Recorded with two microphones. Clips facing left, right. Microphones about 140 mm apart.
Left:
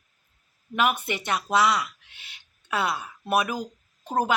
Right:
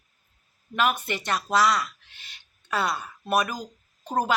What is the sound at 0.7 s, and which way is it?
A woman's voice, 10° left (ahead or behind).